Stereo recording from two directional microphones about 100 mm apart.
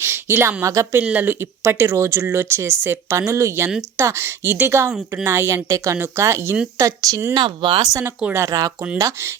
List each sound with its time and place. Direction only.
0.0 s a sound: 25° right (ahead or behind)
0.6 s a woman's voice: 30° right (ahead or behind)
1.0 s a woman's voice: 15° right (ahead or behind); by 7.2 s 35° right (ahead or behind)
7.3 s speech: 50° right (ahead or behind)
8.3 s a woman's voice: 30° right (ahead or behind)